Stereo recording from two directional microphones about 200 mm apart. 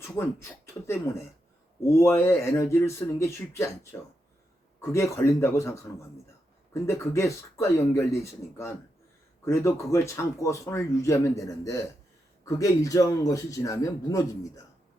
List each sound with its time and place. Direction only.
0.0 s speech: 15° left (ahead or behind)
2.0 s a man's voice: 15° left (ahead or behind)